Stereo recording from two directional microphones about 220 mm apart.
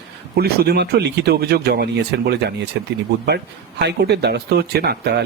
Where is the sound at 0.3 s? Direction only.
45° right (ahead or behind).